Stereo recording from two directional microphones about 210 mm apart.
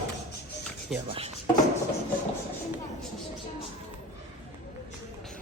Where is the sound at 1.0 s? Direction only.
25° right (ahead or behind).